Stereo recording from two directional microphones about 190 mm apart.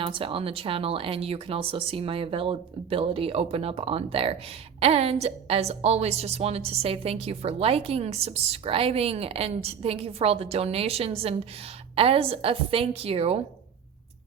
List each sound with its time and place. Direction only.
0.0 s a woman's voice: 25° right (ahead or behind)